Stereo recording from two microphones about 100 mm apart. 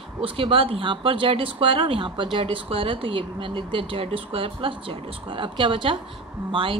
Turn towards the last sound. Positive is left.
turn(degrees=-60)  # may be behind; listen again after turning